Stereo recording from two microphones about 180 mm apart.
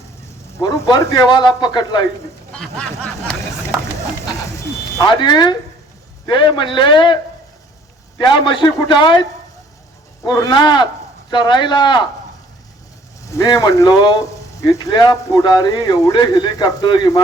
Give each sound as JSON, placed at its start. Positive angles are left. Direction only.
{"t": 0.6, "sound": "speech", "side_deg": 20}
{"t": 2.5, "sound": "speech", "side_deg": 5}
{"t": 4.9, "sound": "speech", "side_deg": 25}
{"t": 8.2, "sound": "speech", "side_deg": 25}
{"t": 10.2, "sound": "speech", "side_deg": 20}
{"t": 13.2, "sound": "speech", "side_deg": 20}